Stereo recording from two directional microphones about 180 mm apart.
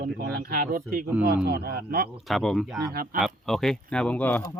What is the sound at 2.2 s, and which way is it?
Speech, centre (ahead or behind).